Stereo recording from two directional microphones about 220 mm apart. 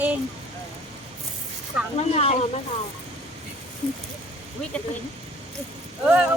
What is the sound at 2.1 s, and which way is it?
Speech, 30° left (ahead or behind).